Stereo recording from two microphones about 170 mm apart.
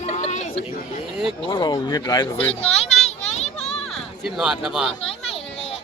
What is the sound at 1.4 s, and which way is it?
Speech, 25° left (ahead or behind).